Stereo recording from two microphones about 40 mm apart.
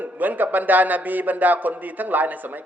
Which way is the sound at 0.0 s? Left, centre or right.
Right.